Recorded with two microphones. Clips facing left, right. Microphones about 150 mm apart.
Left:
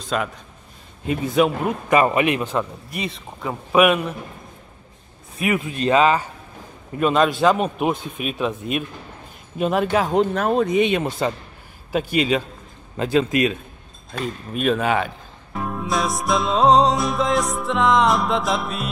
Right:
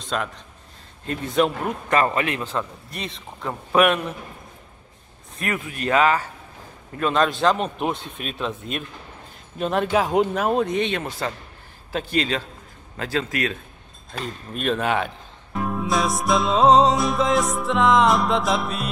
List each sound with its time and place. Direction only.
0.0 s a man's voice: 5° left (ahead or behind)
5.6 s a man's voice: 25° left (ahead or behind)
7.0 s a man's voice: 10° left (ahead or behind)
10.8 s a man's voice: 15° left (ahead or behind)
14.2 s speech: 5° left (ahead or behind)